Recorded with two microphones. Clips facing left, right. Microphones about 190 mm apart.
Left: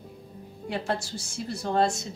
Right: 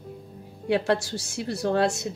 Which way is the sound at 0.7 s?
70° right (ahead or behind).